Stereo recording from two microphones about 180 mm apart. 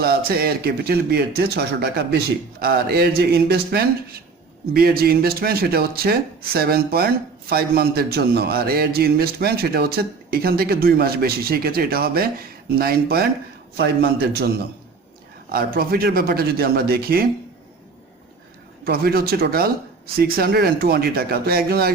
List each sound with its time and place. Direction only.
0.0 s speech: 55° right (ahead or behind)
15.5 s speech: 55° right (ahead or behind)
18.9 s speech: 60° right (ahead or behind)